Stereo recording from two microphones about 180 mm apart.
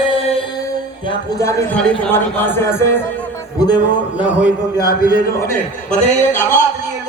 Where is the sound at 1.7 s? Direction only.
5° left (ahead or behind).